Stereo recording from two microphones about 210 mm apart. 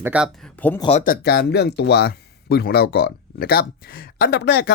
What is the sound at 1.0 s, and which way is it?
Speech, 45° left (ahead or behind).